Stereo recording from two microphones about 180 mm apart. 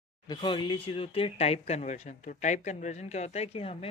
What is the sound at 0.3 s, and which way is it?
Speech, 25° left (ahead or behind).